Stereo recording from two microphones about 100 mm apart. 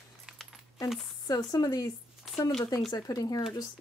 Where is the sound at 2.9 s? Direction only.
40° left (ahead or behind).